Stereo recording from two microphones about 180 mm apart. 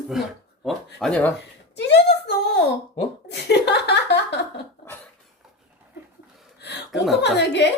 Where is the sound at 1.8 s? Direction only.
70° left (ahead or behind).